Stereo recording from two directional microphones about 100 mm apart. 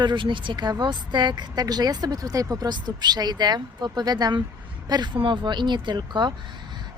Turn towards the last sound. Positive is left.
turn(degrees=-50)  # may be behind; listen again after turning